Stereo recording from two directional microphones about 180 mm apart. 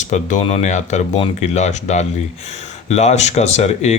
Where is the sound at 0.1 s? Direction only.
40° left (ahead or behind).